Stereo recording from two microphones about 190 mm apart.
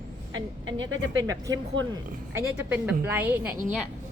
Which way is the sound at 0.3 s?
90° right.